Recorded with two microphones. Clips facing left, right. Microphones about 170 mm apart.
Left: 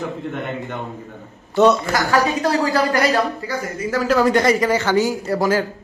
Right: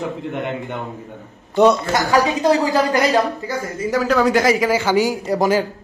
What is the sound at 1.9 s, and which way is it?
Speech, 20° right (ahead or behind).